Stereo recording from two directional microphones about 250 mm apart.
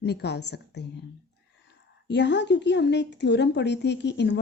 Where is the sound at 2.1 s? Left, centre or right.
Left.